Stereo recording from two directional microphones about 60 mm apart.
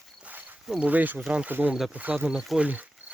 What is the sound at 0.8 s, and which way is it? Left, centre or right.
Speech, right.